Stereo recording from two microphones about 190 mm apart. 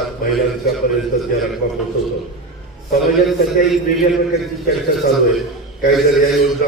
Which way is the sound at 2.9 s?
Centre (ahead or behind).